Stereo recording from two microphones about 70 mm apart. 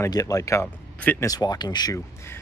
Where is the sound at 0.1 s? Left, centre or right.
Left.